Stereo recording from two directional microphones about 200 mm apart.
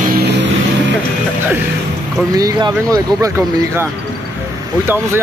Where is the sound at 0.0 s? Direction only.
50° right (ahead or behind).